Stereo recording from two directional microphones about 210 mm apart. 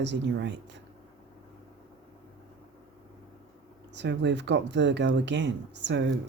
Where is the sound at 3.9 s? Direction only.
55° right (ahead or behind).